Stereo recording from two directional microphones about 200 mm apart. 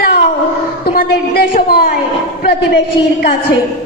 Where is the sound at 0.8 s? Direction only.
50° left (ahead or behind).